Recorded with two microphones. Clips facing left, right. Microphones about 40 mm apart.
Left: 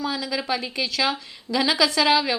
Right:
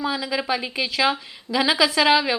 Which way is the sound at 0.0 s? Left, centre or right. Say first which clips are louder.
Right 2 dB; centre.